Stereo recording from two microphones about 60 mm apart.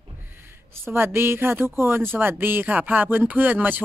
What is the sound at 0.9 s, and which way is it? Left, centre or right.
Speech, right.